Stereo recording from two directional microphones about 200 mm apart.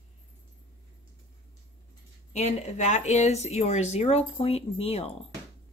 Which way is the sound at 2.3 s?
35° left (ahead or behind).